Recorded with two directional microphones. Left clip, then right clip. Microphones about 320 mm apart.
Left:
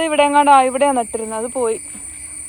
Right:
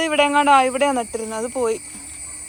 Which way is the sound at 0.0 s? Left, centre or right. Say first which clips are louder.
Left 3 dB; centre.